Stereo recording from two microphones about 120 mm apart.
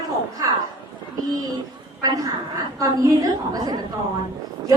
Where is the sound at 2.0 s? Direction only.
30° right (ahead or behind).